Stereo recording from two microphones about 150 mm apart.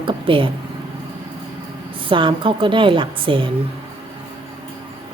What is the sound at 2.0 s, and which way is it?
A woman's voice, 35° right (ahead or behind).